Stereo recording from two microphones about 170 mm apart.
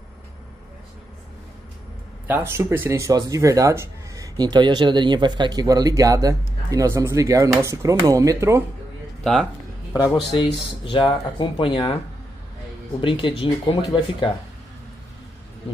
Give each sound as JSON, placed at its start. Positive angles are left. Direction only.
{"t": 2.2, "sound": "speech", "side_deg": -10}
{"t": 9.2, "sound": "speech", "side_deg": 0}
{"t": 10.9, "sound": "speech", "side_deg": 30}
{"t": 13.0, "sound": "speech", "side_deg": 30}